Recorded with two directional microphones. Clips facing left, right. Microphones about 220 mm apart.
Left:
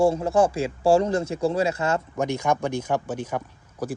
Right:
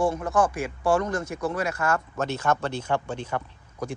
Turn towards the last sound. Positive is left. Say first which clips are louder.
# left 2 dB
turn(degrees=10)  # may be behind; listen again after turning